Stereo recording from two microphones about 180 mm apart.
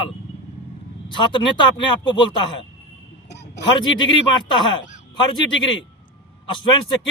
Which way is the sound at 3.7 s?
25° left (ahead or behind).